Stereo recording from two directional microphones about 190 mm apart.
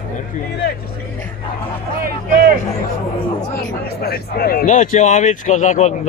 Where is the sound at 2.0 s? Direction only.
50° right (ahead or behind).